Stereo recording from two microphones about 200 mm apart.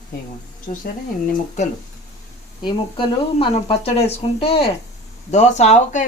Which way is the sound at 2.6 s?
25° left (ahead or behind).